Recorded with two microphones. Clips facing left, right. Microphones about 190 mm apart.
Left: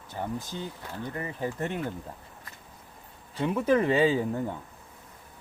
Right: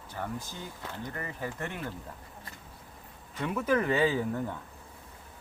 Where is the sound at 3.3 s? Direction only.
25° left (ahead or behind).